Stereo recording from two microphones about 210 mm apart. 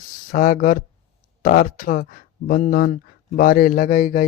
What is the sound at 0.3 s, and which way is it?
Speech, 40° left (ahead or behind).